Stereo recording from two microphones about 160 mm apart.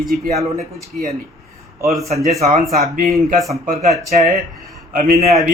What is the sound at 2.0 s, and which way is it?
Speech, 45° right (ahead or behind).